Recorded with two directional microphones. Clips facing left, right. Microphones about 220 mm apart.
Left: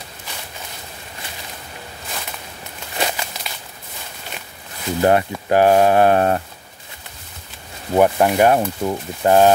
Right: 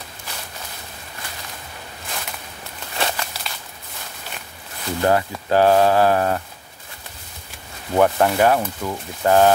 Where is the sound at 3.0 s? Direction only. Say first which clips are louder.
Left 1 dB; 10° left (ahead or behind).